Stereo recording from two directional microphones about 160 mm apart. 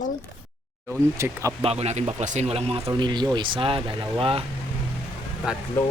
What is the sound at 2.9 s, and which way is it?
Speech, 30° right (ahead or behind).